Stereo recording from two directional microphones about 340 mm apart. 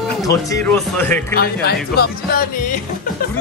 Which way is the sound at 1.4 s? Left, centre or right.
Left.